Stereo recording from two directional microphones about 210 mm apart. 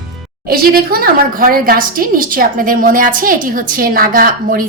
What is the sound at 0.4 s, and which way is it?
A woman's voice, 45° right (ahead or behind).